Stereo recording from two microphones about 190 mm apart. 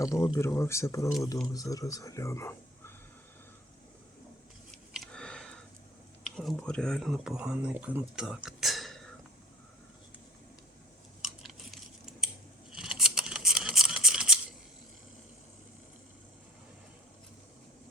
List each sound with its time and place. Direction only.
0.0 s speech: 15° left (ahead or behind)
4.9 s sniff: 5° left (ahead or behind)
6.2 s speech: centre (ahead or behind)
8.4 s whispering: centre (ahead or behind)
11.3 s a sound: centre (ahead or behind)